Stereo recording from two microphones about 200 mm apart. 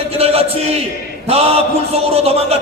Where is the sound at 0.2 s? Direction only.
30° right (ahead or behind).